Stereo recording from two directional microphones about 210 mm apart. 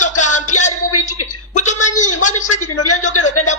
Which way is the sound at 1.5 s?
35° left (ahead or behind).